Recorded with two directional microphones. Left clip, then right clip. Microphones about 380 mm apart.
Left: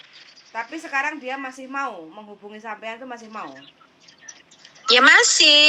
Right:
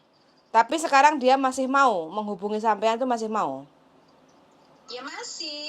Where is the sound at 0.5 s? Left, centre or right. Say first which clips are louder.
Right 7 dB; right.